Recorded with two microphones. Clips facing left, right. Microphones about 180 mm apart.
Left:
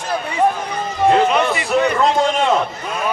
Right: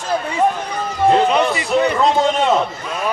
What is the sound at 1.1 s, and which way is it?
Music, centre (ahead or behind).